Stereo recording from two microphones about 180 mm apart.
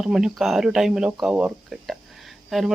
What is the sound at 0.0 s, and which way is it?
Speech, 5° right (ahead or behind).